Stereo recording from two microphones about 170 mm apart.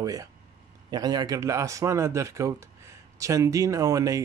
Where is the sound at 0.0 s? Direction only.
20° right (ahead or behind).